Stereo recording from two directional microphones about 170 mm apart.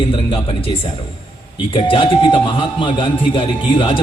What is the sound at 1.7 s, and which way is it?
Speech, 30° left (ahead or behind).